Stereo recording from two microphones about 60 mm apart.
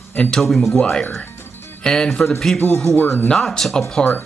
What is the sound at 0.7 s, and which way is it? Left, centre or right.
Speech, centre.